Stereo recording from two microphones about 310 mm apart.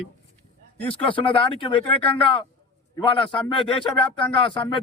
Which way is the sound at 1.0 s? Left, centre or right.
Centre.